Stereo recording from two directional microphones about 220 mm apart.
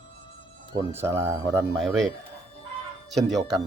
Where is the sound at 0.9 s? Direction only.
10° right (ahead or behind).